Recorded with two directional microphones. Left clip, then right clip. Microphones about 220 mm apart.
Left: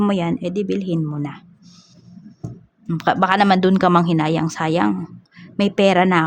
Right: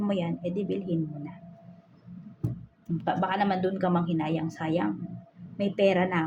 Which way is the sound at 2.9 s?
55° left (ahead or behind).